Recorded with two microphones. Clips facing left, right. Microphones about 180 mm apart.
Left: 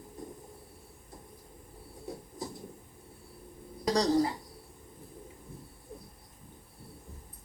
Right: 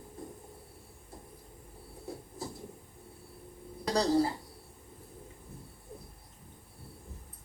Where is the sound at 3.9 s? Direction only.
30° right (ahead or behind).